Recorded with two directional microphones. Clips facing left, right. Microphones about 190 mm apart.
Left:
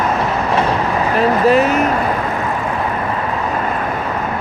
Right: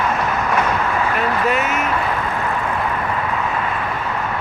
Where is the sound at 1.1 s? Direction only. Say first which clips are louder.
Left 11 dB; 35° left (ahead or behind).